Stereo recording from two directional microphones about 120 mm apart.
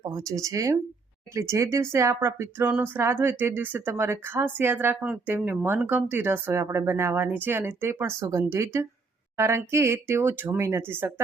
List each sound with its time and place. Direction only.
0.1 s speech: 30° right (ahead or behind)